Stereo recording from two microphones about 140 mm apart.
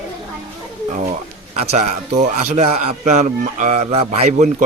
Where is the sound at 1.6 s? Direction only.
55° right (ahead or behind).